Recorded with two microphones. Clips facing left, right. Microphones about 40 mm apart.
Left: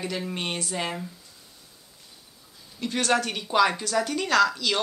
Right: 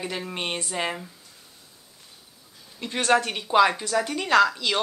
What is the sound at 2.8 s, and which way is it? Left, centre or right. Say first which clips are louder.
Speech: right 2 dB; centre.